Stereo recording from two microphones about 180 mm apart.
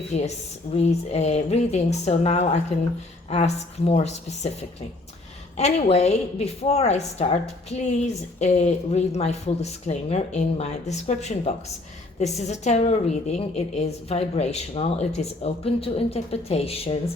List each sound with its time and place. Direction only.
0.1 s a woman's voice: 35° left (ahead or behind)
5.5 s a woman's voice: 35° left (ahead or behind)